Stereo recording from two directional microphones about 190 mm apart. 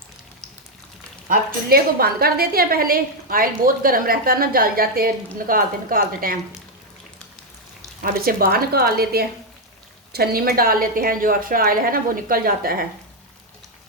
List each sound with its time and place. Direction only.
1.3 s a woman's voice: 50° right (ahead or behind)
8.0 s a woman's voice: 50° right (ahead or behind)